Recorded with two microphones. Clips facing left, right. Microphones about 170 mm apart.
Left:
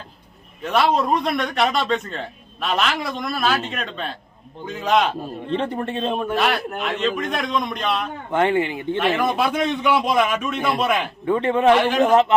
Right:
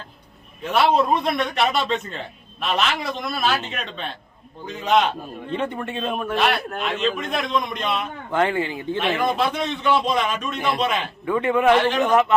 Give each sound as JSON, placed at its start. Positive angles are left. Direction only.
{"t": 0.6, "sound": "a man's voice", "side_deg": 0}
{"t": 5.2, "sound": "a man's voice", "side_deg": 30}
{"t": 6.3, "sound": "a man's voice", "side_deg": 0}
{"t": 8.3, "sound": "speech", "side_deg": 25}
{"t": 9.1, "sound": "a man's voice", "side_deg": 10}
{"t": 11.3, "sound": "speech", "side_deg": 30}
{"t": 11.7, "sound": "a man's voice", "side_deg": 15}
{"t": 11.9, "sound": "a man's voice", "side_deg": 30}